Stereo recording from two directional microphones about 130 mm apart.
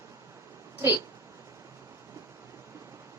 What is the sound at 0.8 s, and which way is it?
Speech, 20° right (ahead or behind).